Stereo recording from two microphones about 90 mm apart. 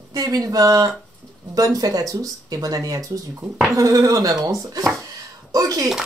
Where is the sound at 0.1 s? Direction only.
40° right (ahead or behind).